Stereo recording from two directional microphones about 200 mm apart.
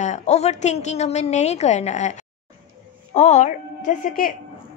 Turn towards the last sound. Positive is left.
turn(degrees=40)  # may be behind; listen again after turning